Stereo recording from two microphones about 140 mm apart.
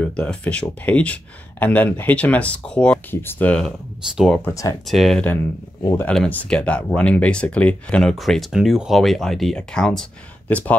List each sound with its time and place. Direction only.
0.0 s speech: 5° left (ahead or behind)
4.1 s speech: 5° right (ahead or behind)
4.5 s speech: 20° left (ahead or behind)
4.8 s speech: centre (ahead or behind)